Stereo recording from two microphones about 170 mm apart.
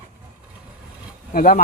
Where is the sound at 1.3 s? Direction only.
55° left (ahead or behind).